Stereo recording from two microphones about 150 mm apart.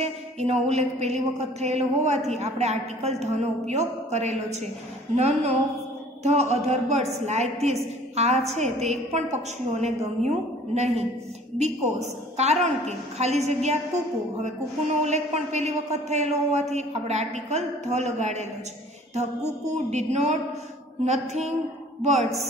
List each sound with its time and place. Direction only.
0.0 s a woman's voice: 45° right (ahead or behind)